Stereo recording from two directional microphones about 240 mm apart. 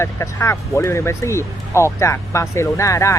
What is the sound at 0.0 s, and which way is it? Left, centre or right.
Speech, centre.